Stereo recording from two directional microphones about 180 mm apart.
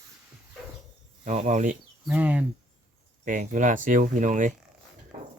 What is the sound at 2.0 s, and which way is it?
Speech, 5° right (ahead or behind).